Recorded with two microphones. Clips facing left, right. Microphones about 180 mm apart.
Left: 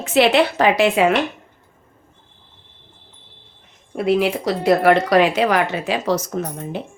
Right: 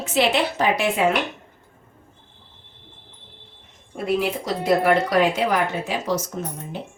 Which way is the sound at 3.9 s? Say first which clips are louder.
Left 5 dB; 75° left (ahead or behind).